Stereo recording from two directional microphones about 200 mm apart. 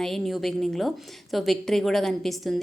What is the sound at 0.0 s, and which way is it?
A woman's voice, centre (ahead or behind).